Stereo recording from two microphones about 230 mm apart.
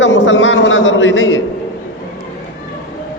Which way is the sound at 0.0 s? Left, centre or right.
Left.